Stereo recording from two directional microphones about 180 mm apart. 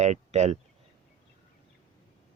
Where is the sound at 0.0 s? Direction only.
40° right (ahead or behind).